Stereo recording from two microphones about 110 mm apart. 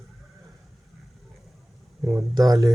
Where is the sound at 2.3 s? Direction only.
35° right (ahead or behind).